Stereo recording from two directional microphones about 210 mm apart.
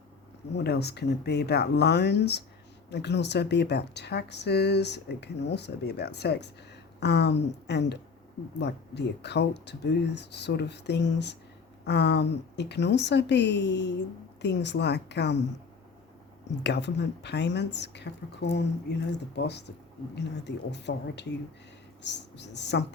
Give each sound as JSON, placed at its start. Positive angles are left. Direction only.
{"t": 0.5, "sound": "speech", "side_deg": 50}
{"t": 16.6, "sound": "speech", "side_deg": 55}